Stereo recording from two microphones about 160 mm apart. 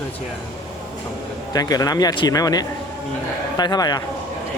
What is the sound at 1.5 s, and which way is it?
A man's voice, 25° left (ahead or behind).